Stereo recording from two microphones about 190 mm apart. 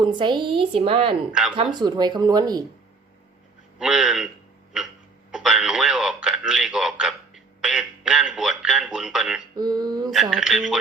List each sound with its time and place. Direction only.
0.0 s a woman's voice: 25° right (ahead or behind)
1.3 s speech: 5° right (ahead or behind)
1.5 s a woman's voice: 25° right (ahead or behind)
3.8 s a man's voice: 5° right (ahead or behind)
9.6 s a woman's voice: 20° right (ahead or behind)
10.1 s speech: 5° right (ahead or behind)